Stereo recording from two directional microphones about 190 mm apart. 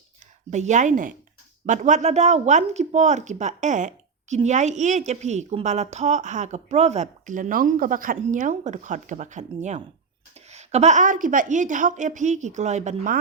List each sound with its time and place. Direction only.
0.5 s a woman's voice: 40° right (ahead or behind)